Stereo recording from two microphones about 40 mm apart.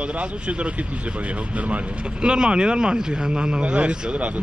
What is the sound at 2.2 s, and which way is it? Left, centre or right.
Speech, right.